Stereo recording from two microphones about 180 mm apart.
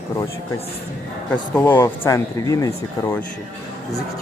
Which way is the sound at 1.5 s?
10° left (ahead or behind).